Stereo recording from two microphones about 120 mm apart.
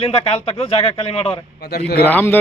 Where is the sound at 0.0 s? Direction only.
50° left (ahead or behind).